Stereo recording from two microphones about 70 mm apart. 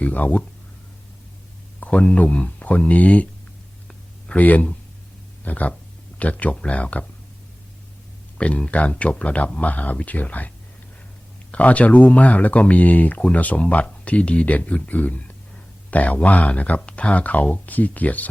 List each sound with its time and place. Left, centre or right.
0.0 s speech: left
1.8 s speech: left
3.8 s a sound: centre
5.4 s speech: left
8.4 s speech: centre
11.5 s speech: centre